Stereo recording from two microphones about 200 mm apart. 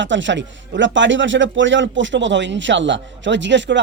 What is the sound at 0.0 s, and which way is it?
Speech, 65° right (ahead or behind).